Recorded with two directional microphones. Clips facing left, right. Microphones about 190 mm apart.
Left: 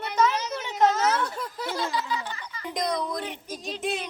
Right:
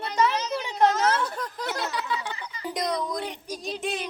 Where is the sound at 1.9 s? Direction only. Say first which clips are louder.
Left 1 dB; 65° right (ahead or behind).